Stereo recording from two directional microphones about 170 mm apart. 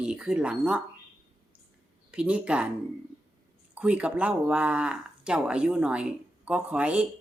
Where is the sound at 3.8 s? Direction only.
5° right (ahead or behind).